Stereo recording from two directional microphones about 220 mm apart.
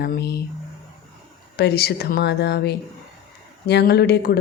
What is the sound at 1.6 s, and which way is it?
Speech, 45° left (ahead or behind).